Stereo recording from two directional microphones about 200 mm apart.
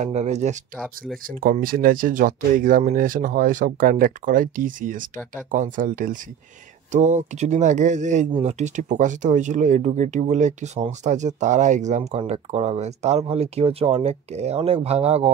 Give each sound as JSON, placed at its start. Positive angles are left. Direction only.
{"t": 0.0, "sound": "speech", "side_deg": -35}
{"t": 0.7, "sound": "speech", "side_deg": 0}
{"t": 1.2, "sound": "speech", "side_deg": -45}